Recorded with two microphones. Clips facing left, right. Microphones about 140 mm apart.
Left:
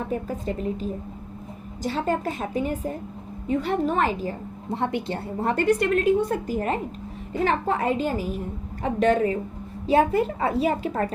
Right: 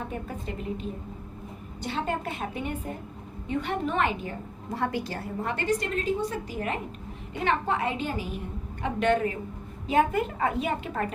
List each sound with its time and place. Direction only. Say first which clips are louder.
0.1 s a woman's voice: left 7 dB; 35° left (ahead or behind)
5.4 s a woman's voice: left 8 dB; 40° left (ahead or behind)
5.6 s a woman's voice: left 7 dB; 60° left (ahead or behind)
7.4 s a woman's voice: left 3 dB; 40° left (ahead or behind)